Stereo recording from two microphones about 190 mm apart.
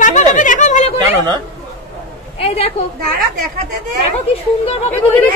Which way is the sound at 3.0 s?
50° right (ahead or behind).